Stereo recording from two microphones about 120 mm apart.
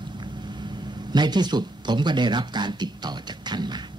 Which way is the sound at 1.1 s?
35° right (ahead or behind).